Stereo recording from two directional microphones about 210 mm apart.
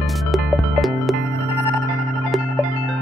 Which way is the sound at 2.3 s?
Centre (ahead or behind).